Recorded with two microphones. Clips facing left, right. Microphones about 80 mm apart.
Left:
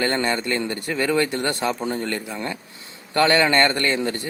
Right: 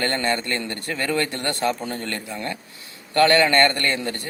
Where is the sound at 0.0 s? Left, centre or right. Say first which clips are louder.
Left 1 dB; centre.